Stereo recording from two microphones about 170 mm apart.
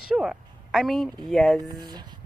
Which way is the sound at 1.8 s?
25° right (ahead or behind).